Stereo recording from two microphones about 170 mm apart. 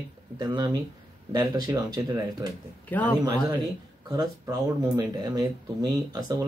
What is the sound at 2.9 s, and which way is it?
Speech, 10° left (ahead or behind).